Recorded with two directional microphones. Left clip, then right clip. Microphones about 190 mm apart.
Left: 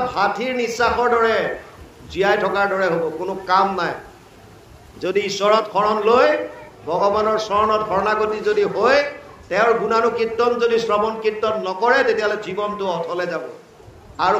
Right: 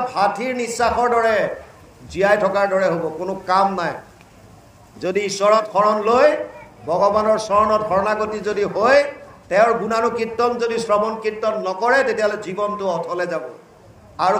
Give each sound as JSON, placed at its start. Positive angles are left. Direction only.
{"t": 0.1, "sound": "a man's voice", "side_deg": -45}
{"t": 4.9, "sound": "a man's voice", "side_deg": -45}